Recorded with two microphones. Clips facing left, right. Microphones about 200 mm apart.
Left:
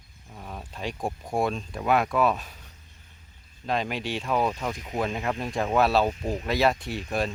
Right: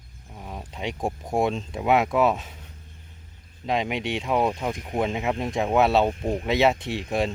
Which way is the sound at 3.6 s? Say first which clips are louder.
Right 3 dB; 20° right (ahead or behind).